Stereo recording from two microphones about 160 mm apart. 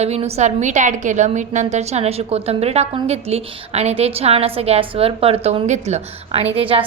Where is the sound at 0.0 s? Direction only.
40° right (ahead or behind).